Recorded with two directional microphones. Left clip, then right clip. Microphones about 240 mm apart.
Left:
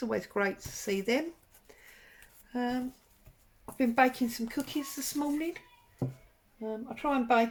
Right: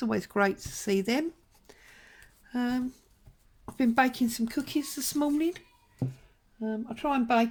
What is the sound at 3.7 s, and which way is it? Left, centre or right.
Speech, right.